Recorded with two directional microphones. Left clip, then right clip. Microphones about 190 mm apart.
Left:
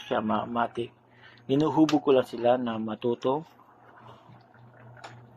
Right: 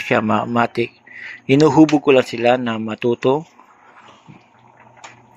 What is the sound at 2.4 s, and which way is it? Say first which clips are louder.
Speech: right 8 dB; 45° right (ahead or behind).